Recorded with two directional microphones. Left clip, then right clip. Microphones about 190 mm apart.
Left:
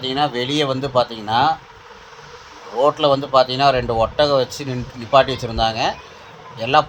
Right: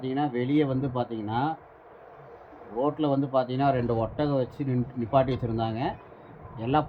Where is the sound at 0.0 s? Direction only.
20° left (ahead or behind).